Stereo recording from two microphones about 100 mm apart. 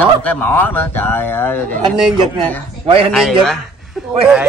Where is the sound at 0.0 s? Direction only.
20° left (ahead or behind).